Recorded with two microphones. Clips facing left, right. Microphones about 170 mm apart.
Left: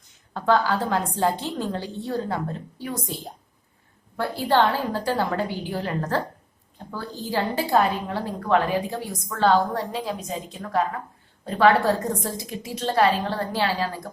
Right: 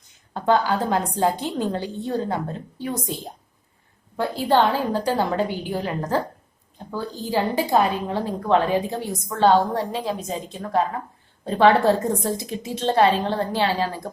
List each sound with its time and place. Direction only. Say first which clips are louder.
0.3 s a woman's voice: right 1 dB; 20° right (ahead or behind)
4.2 s a woman's voice: right 2 dB; 15° right (ahead or behind)